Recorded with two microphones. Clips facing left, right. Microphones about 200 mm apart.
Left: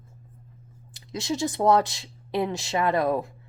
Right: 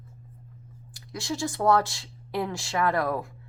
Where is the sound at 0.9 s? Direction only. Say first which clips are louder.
Left 3 dB; 20° left (ahead or behind).